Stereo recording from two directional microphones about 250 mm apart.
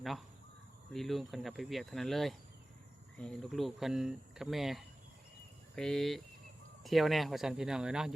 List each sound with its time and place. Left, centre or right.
0.0 s speech: centre